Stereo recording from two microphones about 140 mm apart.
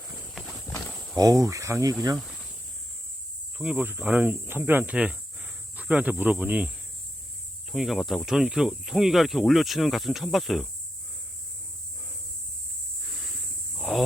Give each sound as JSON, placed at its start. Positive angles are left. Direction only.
{"t": 0.6, "sound": "livestock", "side_deg": 20}
{"t": 1.1, "sound": "speech", "side_deg": -25}
{"t": 3.6, "sound": "speech", "side_deg": -10}
{"t": 7.7, "sound": "speech", "side_deg": 0}
{"t": 13.7, "sound": "cricket", "side_deg": 0}